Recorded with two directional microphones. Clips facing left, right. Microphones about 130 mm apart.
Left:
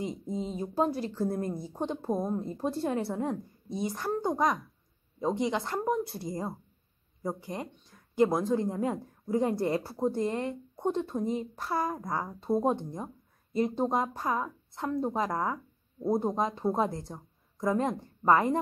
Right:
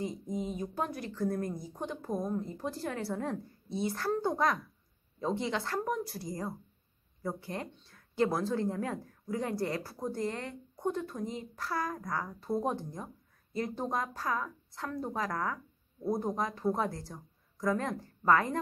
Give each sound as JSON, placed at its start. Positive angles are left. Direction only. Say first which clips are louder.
{"t": 0.0, "sound": "speech", "louder": "left 2 dB", "side_deg": 25}